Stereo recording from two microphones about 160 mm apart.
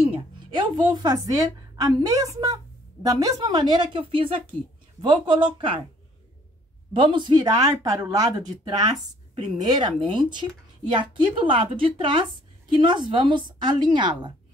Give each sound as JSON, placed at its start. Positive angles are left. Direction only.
{"t": 0.1, "sound": "a sound", "side_deg": -30}
{"t": 0.9, "sound": "a woman's voice", "side_deg": -25}
{"t": 6.9, "sound": "a woman's voice", "side_deg": -30}